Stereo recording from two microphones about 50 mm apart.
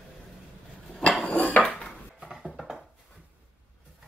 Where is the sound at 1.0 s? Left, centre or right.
Left.